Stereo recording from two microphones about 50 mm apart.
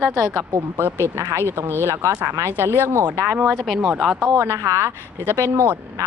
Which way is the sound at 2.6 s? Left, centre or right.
Right.